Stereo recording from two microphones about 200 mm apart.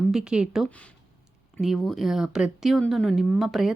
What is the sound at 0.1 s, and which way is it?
Speech, 5° right (ahead or behind).